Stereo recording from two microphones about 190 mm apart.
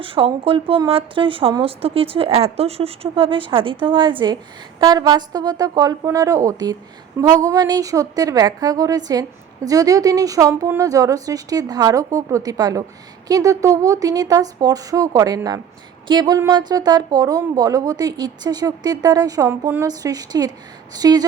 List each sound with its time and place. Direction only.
0.0 s a woman's voice: 30° right (ahead or behind)